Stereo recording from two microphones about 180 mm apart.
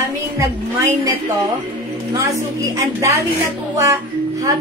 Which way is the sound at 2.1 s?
15° right (ahead or behind).